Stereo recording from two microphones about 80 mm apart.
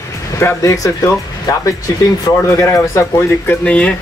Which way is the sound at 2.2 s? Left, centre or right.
Left.